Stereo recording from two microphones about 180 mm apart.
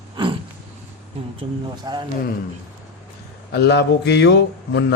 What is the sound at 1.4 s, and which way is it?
Speech, 25° right (ahead or behind).